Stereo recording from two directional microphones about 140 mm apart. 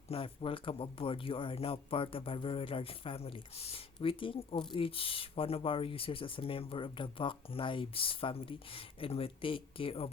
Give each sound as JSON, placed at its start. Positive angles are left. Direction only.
{"t": 0.1, "sound": "speech", "side_deg": 40}